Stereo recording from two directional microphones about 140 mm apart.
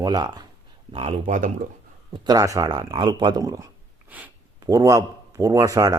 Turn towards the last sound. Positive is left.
turn(degrees=-25)  # may be behind; listen again after turning